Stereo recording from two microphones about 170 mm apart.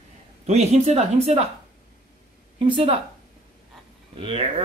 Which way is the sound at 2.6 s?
30° right (ahead or behind).